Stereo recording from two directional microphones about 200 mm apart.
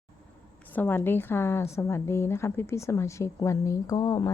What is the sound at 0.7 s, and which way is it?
A woman's voice, 10° left (ahead or behind).